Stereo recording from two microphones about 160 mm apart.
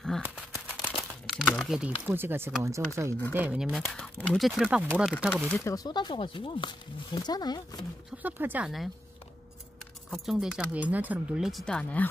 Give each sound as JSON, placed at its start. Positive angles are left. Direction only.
{"t": 0.0, "sound": "crumpling", "side_deg": 0}
{"t": 2.0, "sound": "speech", "side_deg": -15}
{"t": 3.3, "sound": "speech", "side_deg": -10}
{"t": 5.3, "sound": "speech", "side_deg": 5}
{"t": 5.6, "sound": "speech", "side_deg": 25}
{"t": 8.2, "sound": "speech", "side_deg": -10}
{"t": 10.1, "sound": "speech", "side_deg": 0}